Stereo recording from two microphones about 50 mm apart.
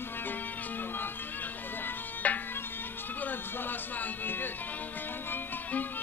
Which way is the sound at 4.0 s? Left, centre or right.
Left.